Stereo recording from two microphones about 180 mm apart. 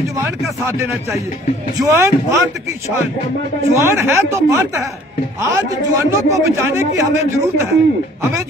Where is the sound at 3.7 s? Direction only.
15° right (ahead or behind).